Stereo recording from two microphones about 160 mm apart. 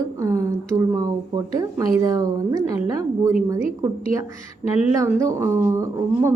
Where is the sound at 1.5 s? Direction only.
20° right (ahead or behind).